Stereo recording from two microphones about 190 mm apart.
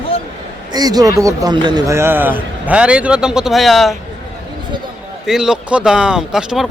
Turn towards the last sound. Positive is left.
turn(degrees=-5)  # may be behind; listen again after turning